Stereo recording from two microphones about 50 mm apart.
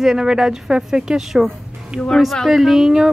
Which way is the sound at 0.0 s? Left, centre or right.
Centre.